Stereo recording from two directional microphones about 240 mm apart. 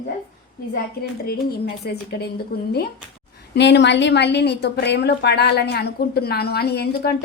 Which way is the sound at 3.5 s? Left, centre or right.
Left.